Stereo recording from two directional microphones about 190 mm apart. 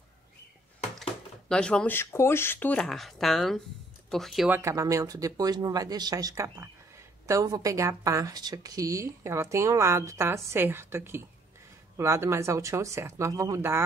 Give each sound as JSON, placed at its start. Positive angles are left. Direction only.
{"t": 1.5, "sound": "speech", "side_deg": 5}
{"t": 4.5, "sound": "speech", "side_deg": -15}